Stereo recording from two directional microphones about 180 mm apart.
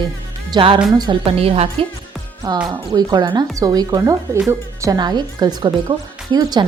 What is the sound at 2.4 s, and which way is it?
A woman's voice, 20° right (ahead or behind).